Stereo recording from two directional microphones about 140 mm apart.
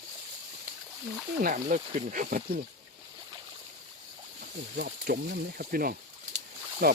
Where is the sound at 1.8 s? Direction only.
45° right (ahead or behind).